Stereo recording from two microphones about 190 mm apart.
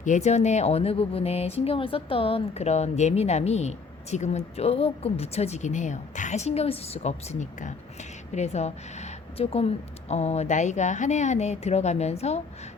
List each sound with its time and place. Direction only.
0.0 s speech: 40° left (ahead or behind)